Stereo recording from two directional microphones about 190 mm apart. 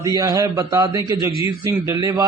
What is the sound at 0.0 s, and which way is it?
A man's voice, 20° right (ahead or behind).